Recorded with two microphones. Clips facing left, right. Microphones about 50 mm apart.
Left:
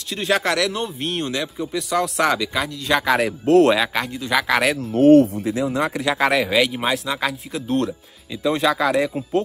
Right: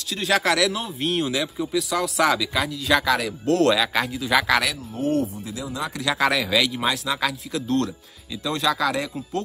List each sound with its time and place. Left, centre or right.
0.2 s a man's voice: centre
4.0 s a man's voice: centre
4.9 s speech: left
6.0 s speech: centre